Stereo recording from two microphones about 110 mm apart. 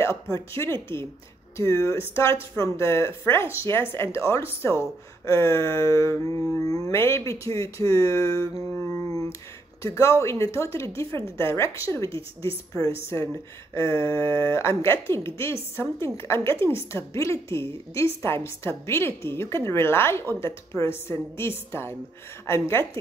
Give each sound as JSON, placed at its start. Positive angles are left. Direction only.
{"t": 0.0, "sound": "speech", "side_deg": 25}